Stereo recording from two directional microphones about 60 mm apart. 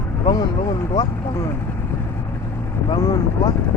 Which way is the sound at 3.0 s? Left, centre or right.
Left.